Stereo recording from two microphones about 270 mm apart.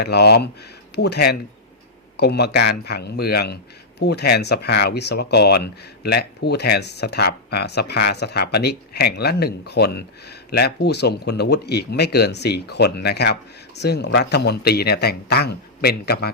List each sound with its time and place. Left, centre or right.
0.0 s speech: left